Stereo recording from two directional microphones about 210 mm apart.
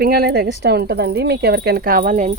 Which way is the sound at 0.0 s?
50° right (ahead or behind).